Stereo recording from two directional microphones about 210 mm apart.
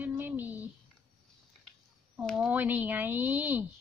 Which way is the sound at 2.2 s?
5° right (ahead or behind).